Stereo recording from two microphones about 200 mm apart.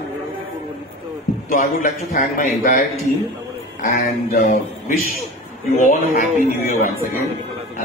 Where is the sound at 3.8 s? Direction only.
50° left (ahead or behind).